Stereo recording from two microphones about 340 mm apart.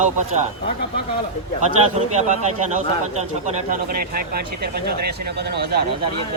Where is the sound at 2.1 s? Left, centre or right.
Right.